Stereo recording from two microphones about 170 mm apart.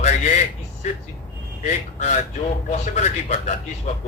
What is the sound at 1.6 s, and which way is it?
Speech, 45° left (ahead or behind).